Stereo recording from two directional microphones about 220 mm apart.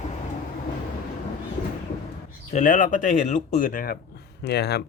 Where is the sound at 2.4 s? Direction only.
35° left (ahead or behind).